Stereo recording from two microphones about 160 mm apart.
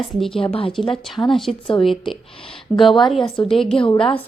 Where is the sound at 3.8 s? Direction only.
35° left (ahead or behind).